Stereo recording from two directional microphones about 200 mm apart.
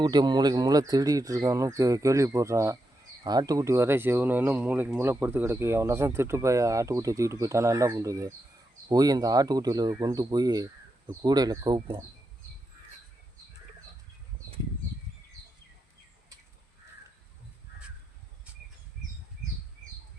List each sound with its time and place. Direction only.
0.0 s speech: 20° right (ahead or behind)